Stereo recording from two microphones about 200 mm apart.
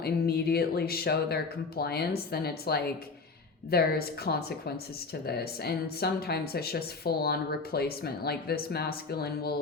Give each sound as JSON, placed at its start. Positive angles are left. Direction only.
{"t": 0.0, "sound": "speech", "side_deg": 50}